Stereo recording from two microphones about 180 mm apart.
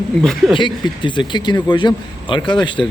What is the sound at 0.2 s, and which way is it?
Speech, centre (ahead or behind).